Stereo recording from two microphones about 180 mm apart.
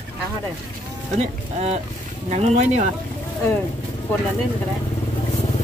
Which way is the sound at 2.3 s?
40° right (ahead or behind).